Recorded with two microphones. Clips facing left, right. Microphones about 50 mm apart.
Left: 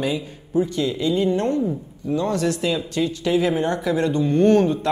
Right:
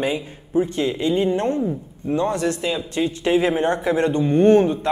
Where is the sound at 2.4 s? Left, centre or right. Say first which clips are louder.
Left 1 dB; centre.